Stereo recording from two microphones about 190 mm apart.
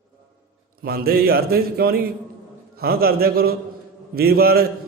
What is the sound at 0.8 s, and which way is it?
A man's voice, 50° right (ahead or behind).